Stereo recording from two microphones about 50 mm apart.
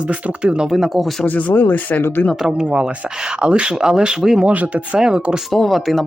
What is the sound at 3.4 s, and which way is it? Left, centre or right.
Speech, right.